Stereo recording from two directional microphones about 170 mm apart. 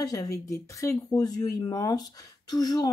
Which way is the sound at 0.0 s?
20° left (ahead or behind).